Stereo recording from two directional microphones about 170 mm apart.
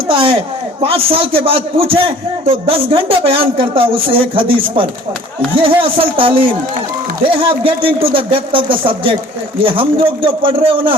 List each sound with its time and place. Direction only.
0.1 s a man's voice: 30° right (ahead or behind)